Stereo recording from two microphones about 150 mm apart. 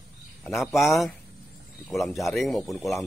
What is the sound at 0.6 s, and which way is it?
Speech, centre (ahead or behind).